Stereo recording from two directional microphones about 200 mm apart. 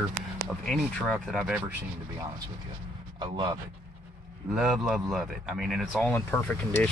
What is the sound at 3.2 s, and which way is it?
Speech, 25° right (ahead or behind).